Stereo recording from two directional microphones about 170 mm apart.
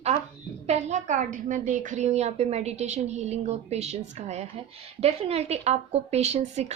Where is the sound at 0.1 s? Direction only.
40° right (ahead or behind).